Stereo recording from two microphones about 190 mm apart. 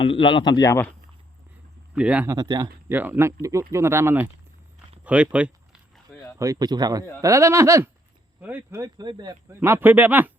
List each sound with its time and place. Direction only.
0.0 s speech: 25° left (ahead or behind)
2.0 s speech: 5° right (ahead or behind)
2.3 s speech: 20° right (ahead or behind)
5.0 s a sound: 5° right (ahead or behind)
6.1 s a sound: 5° left (ahead or behind)
6.4 s speech: 20° right (ahead or behind)